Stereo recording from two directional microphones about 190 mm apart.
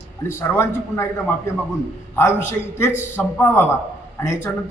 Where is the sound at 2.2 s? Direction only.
10° left (ahead or behind).